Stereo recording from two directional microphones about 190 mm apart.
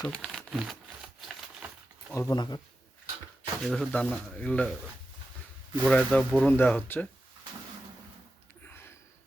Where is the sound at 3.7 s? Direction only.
5° left (ahead or behind).